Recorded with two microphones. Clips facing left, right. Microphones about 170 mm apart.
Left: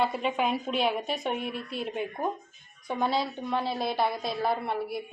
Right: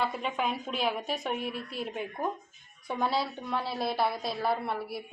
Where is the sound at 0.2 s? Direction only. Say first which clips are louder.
Left 4 dB; centre (ahead or behind).